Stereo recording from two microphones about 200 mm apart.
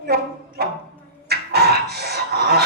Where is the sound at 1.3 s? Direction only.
55° right (ahead or behind).